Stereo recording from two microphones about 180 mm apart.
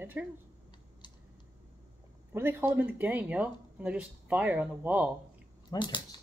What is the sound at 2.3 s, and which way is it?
Speech, 10° right (ahead or behind).